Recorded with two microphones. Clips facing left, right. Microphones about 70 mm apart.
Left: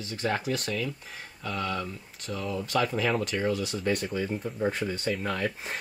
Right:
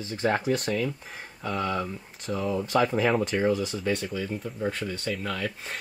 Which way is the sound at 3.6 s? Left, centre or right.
Centre.